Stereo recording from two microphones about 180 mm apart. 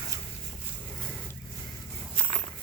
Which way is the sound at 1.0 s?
10° left (ahead or behind).